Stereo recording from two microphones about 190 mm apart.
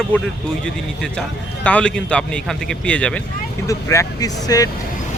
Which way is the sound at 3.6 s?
15° left (ahead or behind).